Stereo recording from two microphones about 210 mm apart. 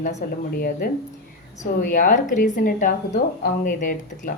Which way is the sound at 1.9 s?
40° left (ahead or behind).